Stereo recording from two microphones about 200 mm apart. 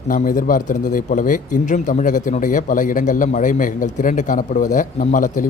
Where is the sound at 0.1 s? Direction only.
45° left (ahead or behind).